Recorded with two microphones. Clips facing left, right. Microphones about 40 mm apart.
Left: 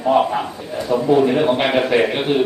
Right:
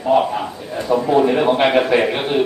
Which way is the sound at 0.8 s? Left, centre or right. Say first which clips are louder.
Even; centre.